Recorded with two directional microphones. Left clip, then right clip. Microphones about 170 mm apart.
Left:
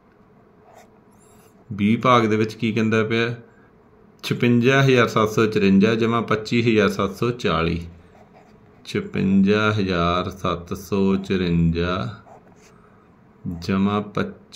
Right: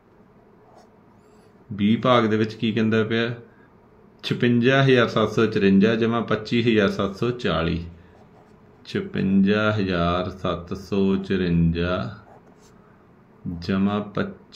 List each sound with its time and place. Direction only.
1.8 s speech: 35° left (ahead or behind)
13.6 s speech: 35° left (ahead or behind)